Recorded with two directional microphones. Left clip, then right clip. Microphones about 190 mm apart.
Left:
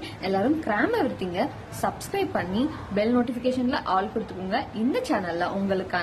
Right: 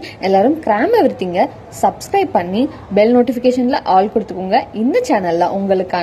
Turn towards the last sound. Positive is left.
turn(degrees=-25)  # may be behind; listen again after turning